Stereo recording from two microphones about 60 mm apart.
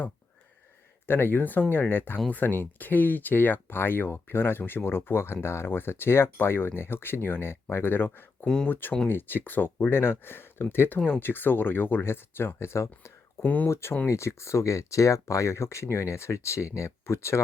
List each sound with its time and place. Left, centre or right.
1.0 s speech: left
13.4 s speech: left
13.7 s speech: left